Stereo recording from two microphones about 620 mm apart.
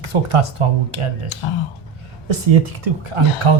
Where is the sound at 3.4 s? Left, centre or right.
Right.